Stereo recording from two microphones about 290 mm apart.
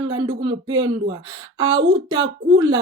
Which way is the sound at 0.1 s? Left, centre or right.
Centre.